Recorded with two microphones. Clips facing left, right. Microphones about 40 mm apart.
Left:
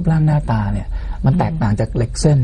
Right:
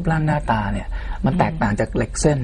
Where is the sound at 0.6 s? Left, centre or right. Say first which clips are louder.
Left 1 dB; right.